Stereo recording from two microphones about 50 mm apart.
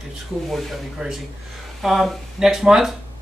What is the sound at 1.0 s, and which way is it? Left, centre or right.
Speech, centre.